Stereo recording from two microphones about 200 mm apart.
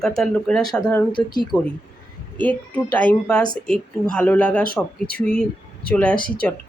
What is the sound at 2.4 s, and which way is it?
Speech, 5° left (ahead or behind).